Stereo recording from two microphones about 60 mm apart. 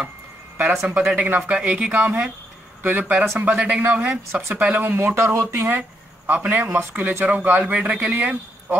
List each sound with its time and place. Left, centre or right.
0.7 s speech: centre
4.3 s speech: right
4.6 s speech: right
4.9 s speech: right
5.7 s a sound: right
7.0 s speech: right